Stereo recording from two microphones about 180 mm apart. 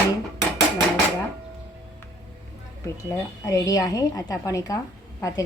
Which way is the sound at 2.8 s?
15° left (ahead or behind).